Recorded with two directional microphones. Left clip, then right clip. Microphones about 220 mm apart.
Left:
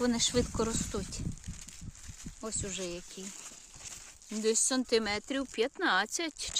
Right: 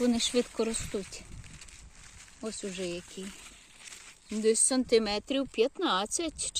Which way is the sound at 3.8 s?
35° left (ahead or behind).